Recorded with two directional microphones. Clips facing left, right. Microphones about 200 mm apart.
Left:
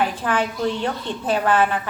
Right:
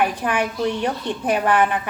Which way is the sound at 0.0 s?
15° right (ahead or behind).